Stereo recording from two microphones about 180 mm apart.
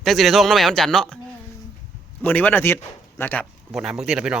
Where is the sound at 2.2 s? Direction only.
10° left (ahead or behind).